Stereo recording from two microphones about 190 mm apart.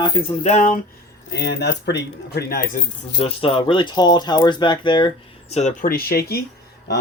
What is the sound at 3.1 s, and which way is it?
Speech, 30° left (ahead or behind).